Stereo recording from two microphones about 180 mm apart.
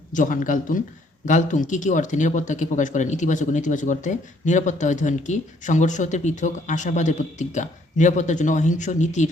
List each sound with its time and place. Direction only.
0.1 s speech: 45° left (ahead or behind)